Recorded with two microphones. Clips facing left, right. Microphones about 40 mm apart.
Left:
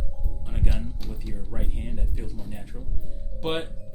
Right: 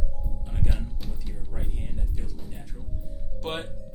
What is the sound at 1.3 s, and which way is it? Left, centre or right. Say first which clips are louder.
Speech: left 5 dB; centre.